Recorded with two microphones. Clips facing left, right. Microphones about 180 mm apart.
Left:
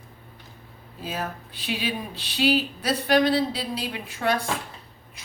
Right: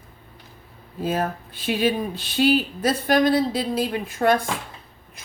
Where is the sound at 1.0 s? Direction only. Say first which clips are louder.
Right 7 dB; 50° right (ahead or behind).